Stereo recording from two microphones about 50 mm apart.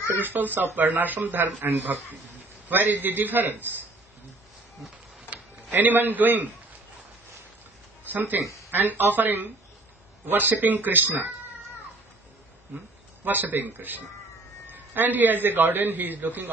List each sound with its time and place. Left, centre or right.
0.1 s a man's voice: right
5.3 s speech: right
8.1 s a man's voice: right
13.2 s a man's voice: right